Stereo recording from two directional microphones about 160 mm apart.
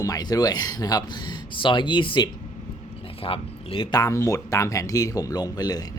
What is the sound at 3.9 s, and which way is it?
Speech, 20° left (ahead or behind).